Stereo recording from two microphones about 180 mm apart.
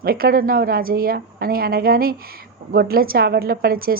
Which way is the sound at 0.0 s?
55° right (ahead or behind).